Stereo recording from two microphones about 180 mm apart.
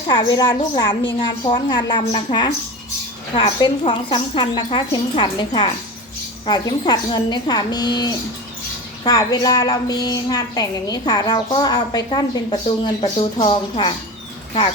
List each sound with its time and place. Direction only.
0.1 s a woman's voice: 25° left (ahead or behind)